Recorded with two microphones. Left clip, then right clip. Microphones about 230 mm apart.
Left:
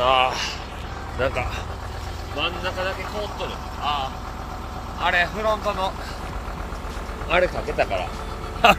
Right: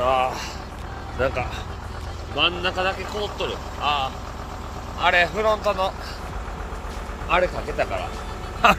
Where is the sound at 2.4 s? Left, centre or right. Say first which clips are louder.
Right 4 dB; right.